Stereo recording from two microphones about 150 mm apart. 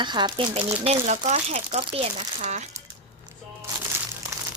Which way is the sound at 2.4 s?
50° right (ahead or behind).